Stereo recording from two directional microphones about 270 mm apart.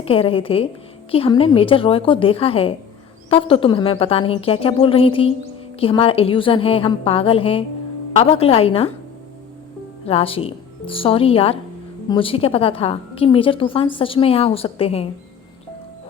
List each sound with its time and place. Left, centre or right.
0.0 s a woman's voice: left
10.1 s a woman's voice: left